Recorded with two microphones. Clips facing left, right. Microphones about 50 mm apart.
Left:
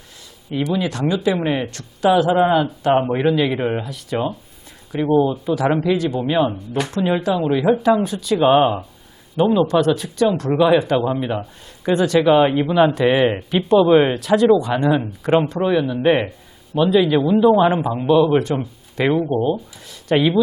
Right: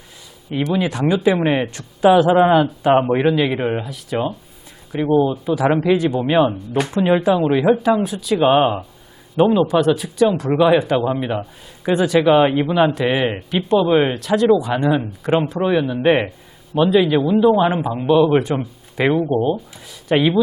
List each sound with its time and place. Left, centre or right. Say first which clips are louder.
0.7 s speech: right 3 dB; centre
18.3 s speech: right 1 dB; centre